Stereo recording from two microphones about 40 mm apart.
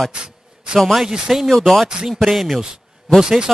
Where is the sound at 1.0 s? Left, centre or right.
Centre.